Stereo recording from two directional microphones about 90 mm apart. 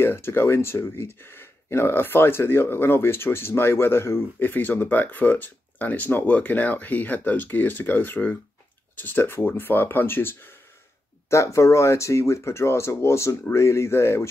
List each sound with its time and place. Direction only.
0.0 s speech: 25° left (ahead or behind)